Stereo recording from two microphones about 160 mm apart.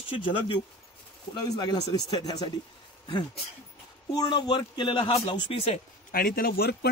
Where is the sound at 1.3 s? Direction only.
25° left (ahead or behind).